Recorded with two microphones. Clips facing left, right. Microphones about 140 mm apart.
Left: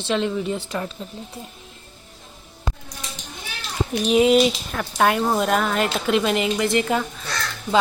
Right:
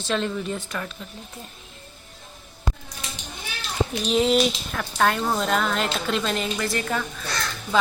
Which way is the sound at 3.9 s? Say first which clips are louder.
Left 5 dB; 5° left (ahead or behind).